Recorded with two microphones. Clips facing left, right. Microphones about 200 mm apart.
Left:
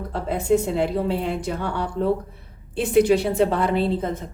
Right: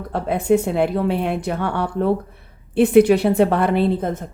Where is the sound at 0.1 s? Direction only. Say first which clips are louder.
Right 3 dB; 60° right (ahead or behind).